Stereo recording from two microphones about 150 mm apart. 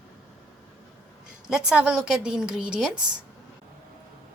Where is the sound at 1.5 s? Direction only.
5° right (ahead or behind).